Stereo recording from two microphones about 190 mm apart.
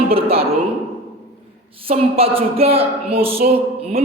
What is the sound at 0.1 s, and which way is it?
Speech, 30° right (ahead or behind).